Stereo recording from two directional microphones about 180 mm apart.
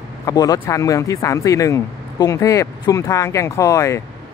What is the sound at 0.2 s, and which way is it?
Speech, 20° left (ahead or behind).